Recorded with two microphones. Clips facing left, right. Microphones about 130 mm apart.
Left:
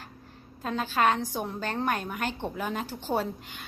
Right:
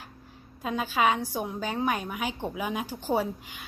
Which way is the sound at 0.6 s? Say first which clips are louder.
Even; 10° right (ahead or behind).